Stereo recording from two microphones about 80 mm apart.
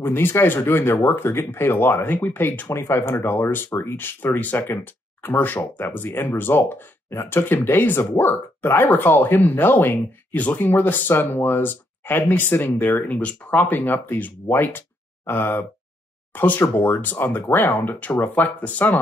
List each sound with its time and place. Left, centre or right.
0.0 s speech: left